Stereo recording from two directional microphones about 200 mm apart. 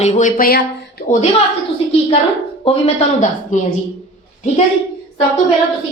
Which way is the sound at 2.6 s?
30° left (ahead or behind).